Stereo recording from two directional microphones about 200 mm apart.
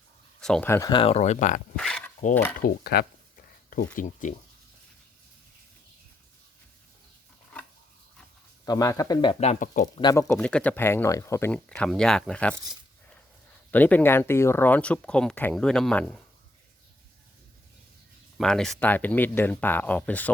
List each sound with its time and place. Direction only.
0.3 s speech: 5° left (ahead or behind); by 1.6 s 40° left (ahead or behind)
1.7 s a sound: 5° left (ahead or behind)
2.6 s speech: 50° left (ahead or behind)
3.9 s speech: 40° left (ahead or behind)
8.6 s speech: 20° left (ahead or behind); by 9.9 s 40° left (ahead or behind)
10.0 s speech: 15° left (ahead or behind)
10.3 s speech: 5° left (ahead or behind)
13.7 s speech: 10° left (ahead or behind)
18.3 s speech: 5° left (ahead or behind)